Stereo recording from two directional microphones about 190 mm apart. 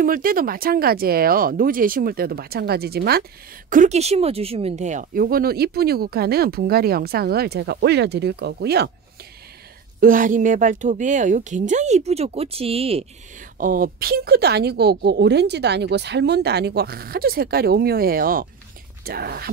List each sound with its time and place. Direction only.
0.0 s speech: 50° right (ahead or behind)
3.7 s speech: 40° right (ahead or behind); by 8.9 s 60° right (ahead or behind)
9.9 s speech: 45° right (ahead or behind)
13.6 s speech: 45° right (ahead or behind)